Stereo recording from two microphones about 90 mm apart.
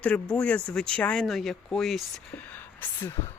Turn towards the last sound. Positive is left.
turn(degrees=20)  # may be behind; listen again after turning